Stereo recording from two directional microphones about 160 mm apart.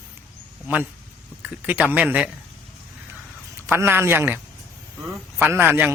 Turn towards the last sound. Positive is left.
turn(degrees=-10)  # may be behind; listen again after turning